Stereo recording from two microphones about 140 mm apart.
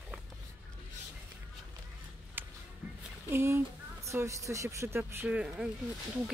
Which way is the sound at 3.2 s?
15° right (ahead or behind).